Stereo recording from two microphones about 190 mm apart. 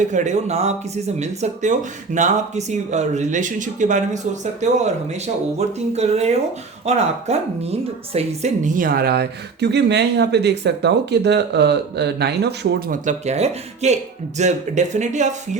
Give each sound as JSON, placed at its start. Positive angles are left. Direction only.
{"t": 0.0, "sound": "speech", "side_deg": -40}
{"t": 13.1, "sound": "speech", "side_deg": -35}